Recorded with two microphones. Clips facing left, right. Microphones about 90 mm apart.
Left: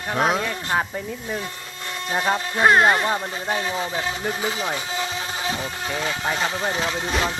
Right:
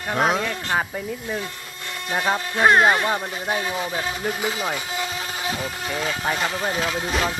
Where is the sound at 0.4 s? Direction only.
15° left (ahead or behind).